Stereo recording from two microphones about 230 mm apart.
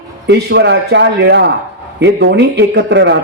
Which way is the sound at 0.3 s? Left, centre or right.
Right.